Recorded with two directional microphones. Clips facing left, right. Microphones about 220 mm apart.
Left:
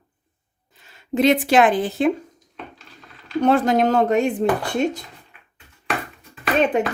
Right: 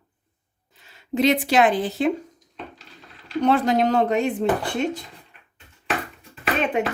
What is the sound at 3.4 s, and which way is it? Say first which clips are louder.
Speech: left 2 dB; 50° left (ahead or behind).